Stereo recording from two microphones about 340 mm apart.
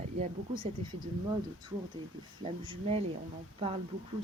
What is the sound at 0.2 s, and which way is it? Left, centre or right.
Speech, centre.